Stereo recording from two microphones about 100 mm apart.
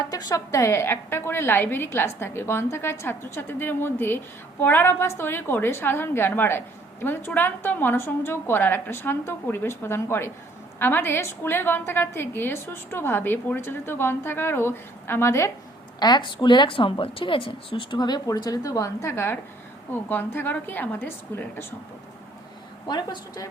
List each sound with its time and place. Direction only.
0.0 s a woman's voice: 40° left (ahead or behind)
16.0 s a woman's voice: 45° left (ahead or behind); by 21.7 s 20° left (ahead or behind)
22.9 s a woman's voice: 45° left (ahead or behind)